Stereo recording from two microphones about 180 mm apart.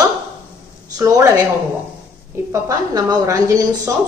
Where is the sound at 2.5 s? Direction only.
15° right (ahead or behind).